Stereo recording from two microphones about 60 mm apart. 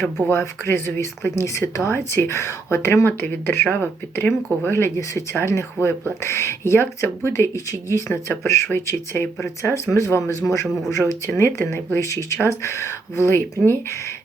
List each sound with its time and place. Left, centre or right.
0.3 s speech: left
1.9 s speech: left
3.1 s speech: left
7.5 s speech: left
9.9 s speech: left
11.3 s speech: left
11.9 s speech: left